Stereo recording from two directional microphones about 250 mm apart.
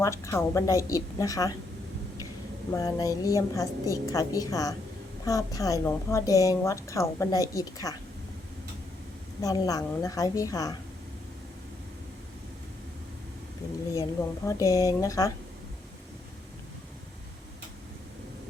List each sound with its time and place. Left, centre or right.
0.0 s a woman's voice: centre
2.7 s a woman's voice: centre
9.4 s a woman's voice: centre
14.4 s a woman's voice: centre